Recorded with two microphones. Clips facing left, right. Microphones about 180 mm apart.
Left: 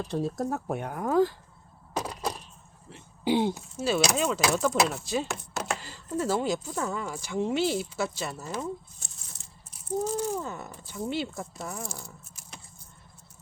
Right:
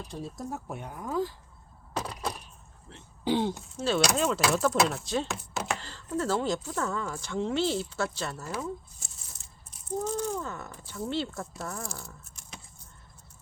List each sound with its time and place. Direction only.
0.1 s speech: 70° left (ahead or behind)
1.9 s a sound: 10° left (ahead or behind)
2.9 s speech: 10° left (ahead or behind)
5.8 s speech: 10° left (ahead or behind)
9.0 s a sound: centre (ahead or behind)
10.2 s speech: 5° left (ahead or behind)
11.8 s speech: centre (ahead or behind)